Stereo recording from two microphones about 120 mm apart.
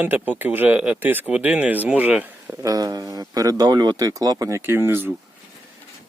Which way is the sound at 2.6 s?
30° right (ahead or behind).